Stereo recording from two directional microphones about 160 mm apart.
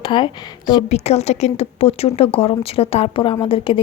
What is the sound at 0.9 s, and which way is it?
Speech, 40° left (ahead or behind).